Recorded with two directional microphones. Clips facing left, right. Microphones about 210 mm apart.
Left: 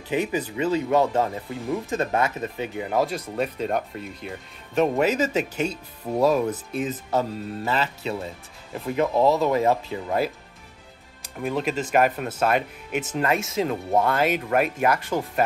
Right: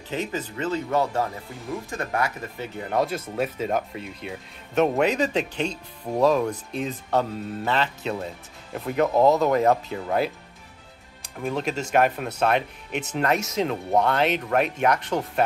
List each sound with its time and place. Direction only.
0.1 s speech: 15° left (ahead or behind)
2.8 s speech: centre (ahead or behind)